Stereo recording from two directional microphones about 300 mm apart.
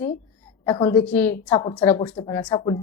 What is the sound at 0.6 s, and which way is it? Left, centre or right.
Speech, centre.